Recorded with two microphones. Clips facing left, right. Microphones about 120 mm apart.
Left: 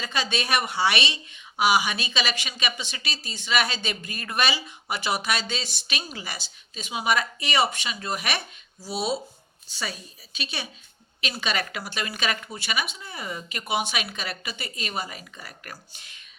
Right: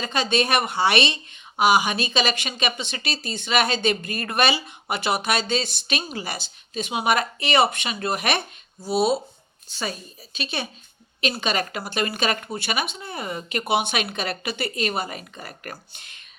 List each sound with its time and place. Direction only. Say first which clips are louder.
0.0 s a woman's voice: right 6 dB; 50° right (ahead or behind)